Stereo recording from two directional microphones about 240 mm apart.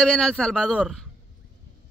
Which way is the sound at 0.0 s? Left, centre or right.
Centre.